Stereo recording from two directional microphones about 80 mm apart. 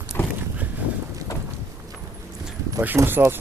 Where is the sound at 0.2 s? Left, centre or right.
Left.